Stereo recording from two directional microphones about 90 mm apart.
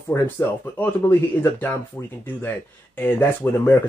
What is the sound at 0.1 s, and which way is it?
Speech, 30° left (ahead or behind).